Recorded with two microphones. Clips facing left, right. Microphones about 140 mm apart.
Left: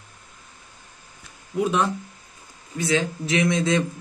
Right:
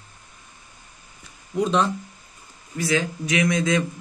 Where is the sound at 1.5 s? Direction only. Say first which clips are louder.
Right 1 dB; 10° left (ahead or behind).